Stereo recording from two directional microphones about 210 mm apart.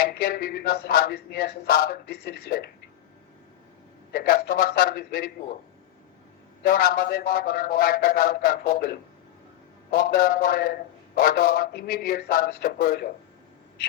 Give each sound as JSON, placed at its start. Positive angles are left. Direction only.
{"t": 0.0, "sound": "a man's voice", "side_deg": 45}
{"t": 4.1, "sound": "a man's voice", "side_deg": 45}
{"t": 6.6, "sound": "a man's voice", "side_deg": 45}